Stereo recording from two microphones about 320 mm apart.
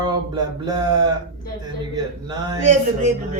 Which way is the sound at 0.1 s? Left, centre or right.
Centre.